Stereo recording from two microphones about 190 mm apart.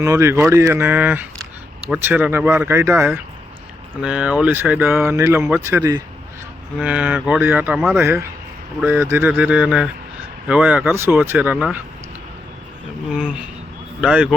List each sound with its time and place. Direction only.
0.0 s speech: 15° right (ahead or behind)
13.1 s speech: 5° right (ahead or behind)